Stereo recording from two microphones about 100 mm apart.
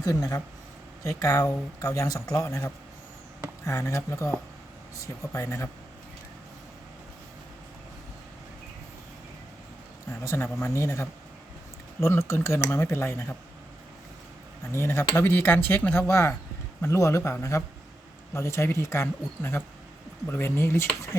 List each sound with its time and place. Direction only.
0.0 s speech: 35° left (ahead or behind)
10.2 s speech: 25° left (ahead or behind)
14.7 s speech: 25° left (ahead or behind)